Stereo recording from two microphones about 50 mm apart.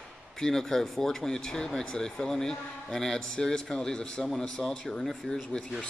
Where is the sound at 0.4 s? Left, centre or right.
Centre.